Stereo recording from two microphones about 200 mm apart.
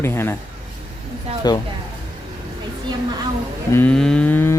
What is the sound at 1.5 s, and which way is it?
Speech, 20° left (ahead or behind).